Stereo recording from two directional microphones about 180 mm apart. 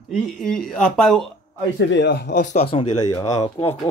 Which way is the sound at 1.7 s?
85° left.